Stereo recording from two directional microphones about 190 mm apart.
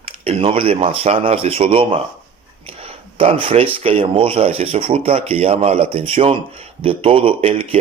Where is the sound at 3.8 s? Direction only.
30° right (ahead or behind).